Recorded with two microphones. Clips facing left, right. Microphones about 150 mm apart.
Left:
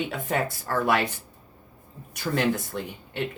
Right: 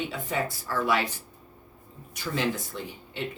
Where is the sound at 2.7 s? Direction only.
60° left (ahead or behind).